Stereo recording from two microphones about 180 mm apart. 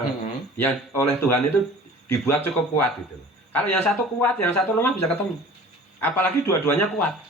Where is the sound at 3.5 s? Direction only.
10° left (ahead or behind).